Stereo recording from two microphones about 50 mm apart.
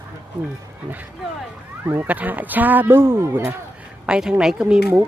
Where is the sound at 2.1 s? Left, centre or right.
Right.